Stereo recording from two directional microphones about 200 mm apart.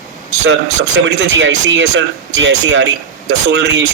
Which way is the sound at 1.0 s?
60° right (ahead or behind).